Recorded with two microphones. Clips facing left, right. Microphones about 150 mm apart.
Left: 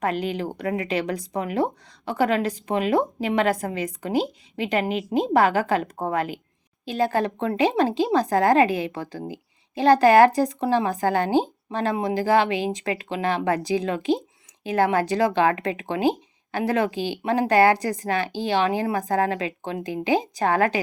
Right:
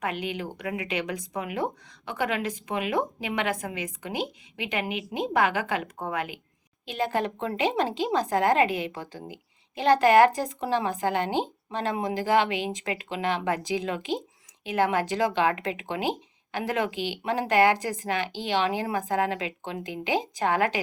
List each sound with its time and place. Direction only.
0.0 s a woman's voice: 35° left (ahead or behind)